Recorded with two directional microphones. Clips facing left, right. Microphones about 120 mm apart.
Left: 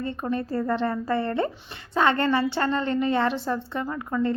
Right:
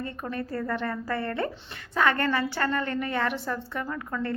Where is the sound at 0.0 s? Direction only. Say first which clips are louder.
Left 5 dB; 25° left (ahead or behind).